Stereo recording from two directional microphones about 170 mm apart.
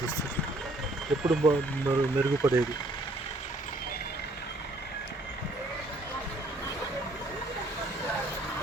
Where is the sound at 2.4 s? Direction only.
15° right (ahead or behind).